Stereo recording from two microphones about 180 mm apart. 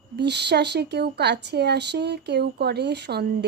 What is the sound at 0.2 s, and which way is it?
Speech, 70° right (ahead or behind).